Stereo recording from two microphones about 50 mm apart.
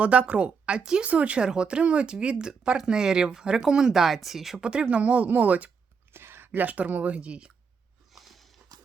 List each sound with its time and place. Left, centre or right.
0.0 s speech: right
1.0 s speech: right; by 4.6 s centre
4.6 s speech: centre
6.1 s a sound: right
6.7 s speech: right
8.1 s walk: centre